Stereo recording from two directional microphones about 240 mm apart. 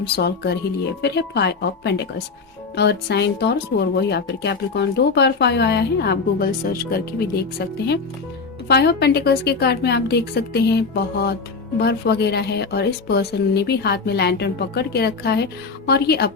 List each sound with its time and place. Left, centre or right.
0.2 s speech: left
8.6 s speech: left